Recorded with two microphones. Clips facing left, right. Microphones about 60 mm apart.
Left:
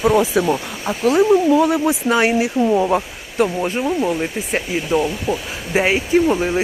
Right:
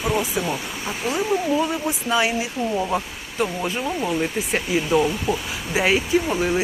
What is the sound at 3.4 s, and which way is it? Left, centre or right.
Speech, left.